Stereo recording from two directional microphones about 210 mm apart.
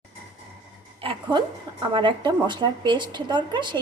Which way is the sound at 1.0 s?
25° right (ahead or behind).